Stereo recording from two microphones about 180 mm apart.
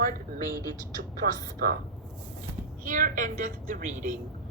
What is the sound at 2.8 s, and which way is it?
A woman's voice, 45° right (ahead or behind).